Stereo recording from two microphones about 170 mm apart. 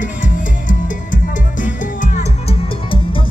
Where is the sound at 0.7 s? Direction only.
50° left (ahead or behind).